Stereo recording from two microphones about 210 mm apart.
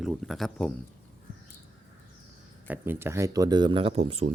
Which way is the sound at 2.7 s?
10° right (ahead or behind).